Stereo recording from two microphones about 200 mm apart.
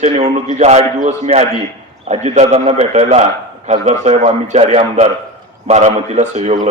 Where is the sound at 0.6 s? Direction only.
35° right (ahead or behind).